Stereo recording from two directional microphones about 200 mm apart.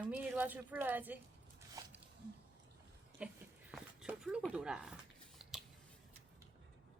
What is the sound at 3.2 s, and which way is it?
Dog, 5° right (ahead or behind).